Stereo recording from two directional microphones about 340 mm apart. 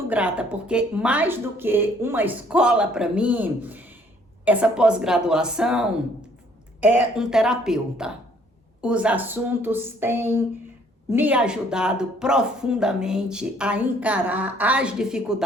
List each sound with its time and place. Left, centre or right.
0.1 s speech: centre